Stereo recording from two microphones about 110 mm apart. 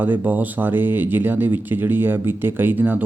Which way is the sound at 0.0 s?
15° right (ahead or behind).